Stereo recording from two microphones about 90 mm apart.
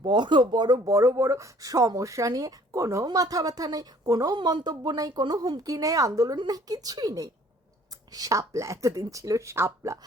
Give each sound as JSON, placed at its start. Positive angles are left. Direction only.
{"t": 0.0, "sound": "speech", "side_deg": -60}
{"t": 0.9, "sound": "speech", "side_deg": -35}
{"t": 4.4, "sound": "speech", "side_deg": -55}